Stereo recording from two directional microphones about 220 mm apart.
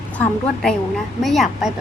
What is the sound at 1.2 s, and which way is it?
Speech, centre (ahead or behind).